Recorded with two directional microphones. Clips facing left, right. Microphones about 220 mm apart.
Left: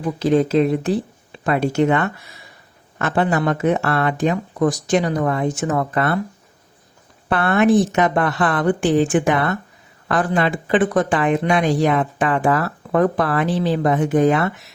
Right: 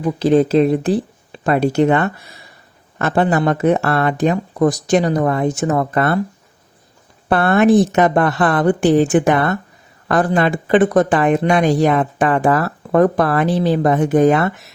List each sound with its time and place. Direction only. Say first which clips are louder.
0.2 s speech: right 3 dB; 35° right (ahead or behind)
7.3 s speech: right 3 dB; 40° right (ahead or behind)